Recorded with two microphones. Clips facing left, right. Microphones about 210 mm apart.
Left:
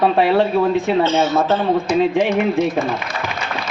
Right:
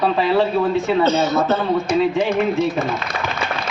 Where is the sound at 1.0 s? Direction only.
40° right (ahead or behind).